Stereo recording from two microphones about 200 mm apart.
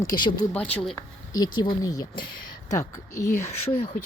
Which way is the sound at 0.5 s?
5° left (ahead or behind).